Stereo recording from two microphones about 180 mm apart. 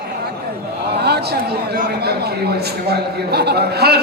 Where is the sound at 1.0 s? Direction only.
65° right (ahead or behind).